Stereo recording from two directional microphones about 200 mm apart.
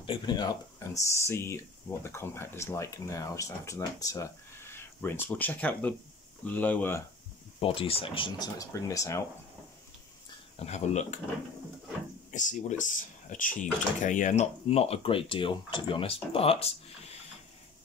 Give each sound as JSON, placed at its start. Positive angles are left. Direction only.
{"t": 0.0, "sound": "speech", "side_deg": 25}
{"t": 7.6, "sound": "speech", "side_deg": 30}
{"t": 10.6, "sound": "speech", "side_deg": 35}
{"t": 12.3, "sound": "speech", "side_deg": 35}